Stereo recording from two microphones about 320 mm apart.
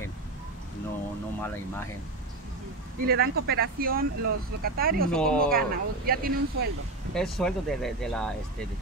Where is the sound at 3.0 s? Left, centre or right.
Right.